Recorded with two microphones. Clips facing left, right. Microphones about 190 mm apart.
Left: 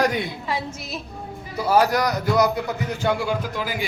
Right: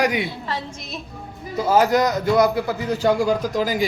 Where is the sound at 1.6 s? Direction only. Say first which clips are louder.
Right 2 dB; 20° right (ahead or behind).